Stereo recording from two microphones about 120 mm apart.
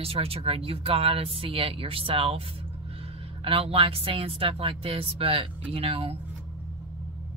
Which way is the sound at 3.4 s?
50° right (ahead or behind).